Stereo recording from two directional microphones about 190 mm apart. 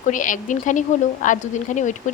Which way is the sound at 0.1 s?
45° left (ahead or behind).